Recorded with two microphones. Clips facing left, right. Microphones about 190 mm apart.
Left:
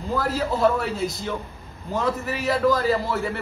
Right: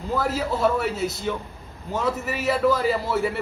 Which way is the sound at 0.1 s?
5° right (ahead or behind).